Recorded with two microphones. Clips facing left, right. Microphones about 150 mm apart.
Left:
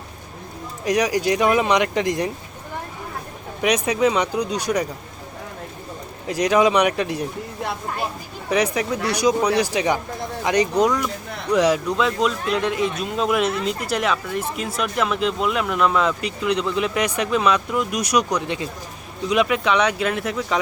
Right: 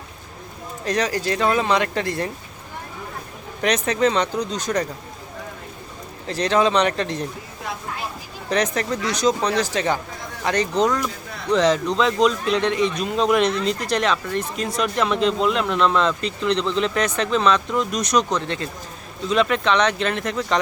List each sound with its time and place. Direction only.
0.9 s speech: 15° left (ahead or behind)
3.6 s speech: 10° left (ahead or behind)
6.2 s speech: 10° left (ahead or behind)
8.4 s speech: 10° left (ahead or behind)